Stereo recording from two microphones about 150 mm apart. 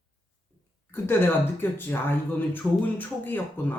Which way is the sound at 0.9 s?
15° left (ahead or behind).